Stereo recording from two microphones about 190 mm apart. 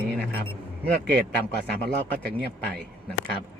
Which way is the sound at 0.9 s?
65° right (ahead or behind).